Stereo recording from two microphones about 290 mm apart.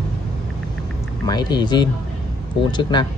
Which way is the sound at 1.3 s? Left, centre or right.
Centre.